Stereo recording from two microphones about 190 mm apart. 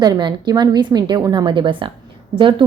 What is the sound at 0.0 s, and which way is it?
A woman's voice, 20° right (ahead or behind).